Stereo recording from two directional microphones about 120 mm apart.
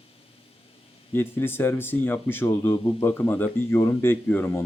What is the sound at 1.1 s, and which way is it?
Speech, 20° left (ahead or behind).